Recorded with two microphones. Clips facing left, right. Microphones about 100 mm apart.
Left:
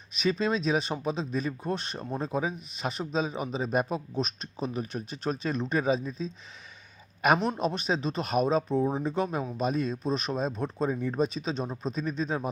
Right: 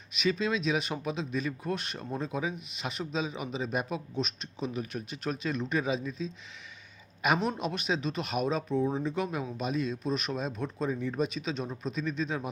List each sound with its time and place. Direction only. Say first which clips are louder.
0.1 s speech: left 2 dB; 40° left (ahead or behind)
7.2 s a man's voice: left 4 dB; 50° left (ahead or behind)
7.6 s speech: left 3 dB; 35° left (ahead or behind)